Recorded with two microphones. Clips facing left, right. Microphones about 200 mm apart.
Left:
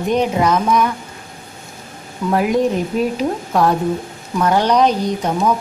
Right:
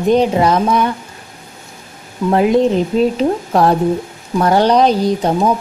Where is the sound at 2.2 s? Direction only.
25° right (ahead or behind).